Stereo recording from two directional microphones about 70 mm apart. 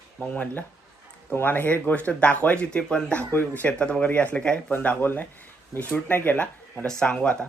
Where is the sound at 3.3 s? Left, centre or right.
Left.